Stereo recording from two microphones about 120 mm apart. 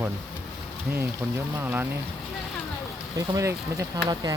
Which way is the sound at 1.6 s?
15° right (ahead or behind).